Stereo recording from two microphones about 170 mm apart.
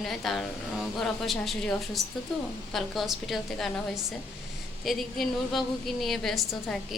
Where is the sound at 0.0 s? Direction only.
Centre (ahead or behind).